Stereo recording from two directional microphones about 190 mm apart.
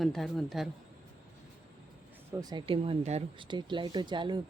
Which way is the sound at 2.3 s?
20° right (ahead or behind).